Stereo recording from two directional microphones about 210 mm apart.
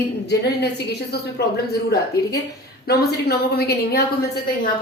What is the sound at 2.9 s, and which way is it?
A woman's voice, 50° left (ahead or behind).